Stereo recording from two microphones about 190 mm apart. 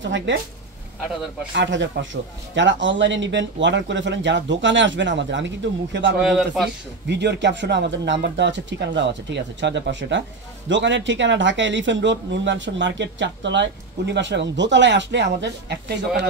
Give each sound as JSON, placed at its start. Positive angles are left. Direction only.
{"t": 0.0, "sound": "speech", "side_deg": -75}
{"t": 1.6, "sound": "speech", "side_deg": -70}
{"t": 6.2, "sound": "a man's voice", "side_deg": 0}
{"t": 7.1, "sound": "speech", "side_deg": -65}